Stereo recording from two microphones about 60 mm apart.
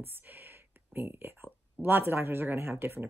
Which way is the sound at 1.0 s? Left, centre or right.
Right.